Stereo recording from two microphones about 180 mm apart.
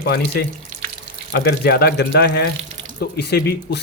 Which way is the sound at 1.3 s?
65° left (ahead or behind).